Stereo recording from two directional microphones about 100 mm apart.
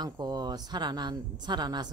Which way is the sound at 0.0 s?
45° right (ahead or behind).